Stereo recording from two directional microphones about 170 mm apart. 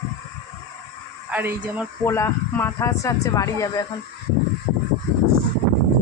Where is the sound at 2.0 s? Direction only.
15° left (ahead or behind).